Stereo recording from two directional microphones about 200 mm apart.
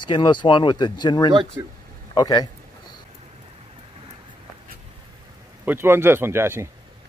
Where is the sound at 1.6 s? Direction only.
15° right (ahead or behind).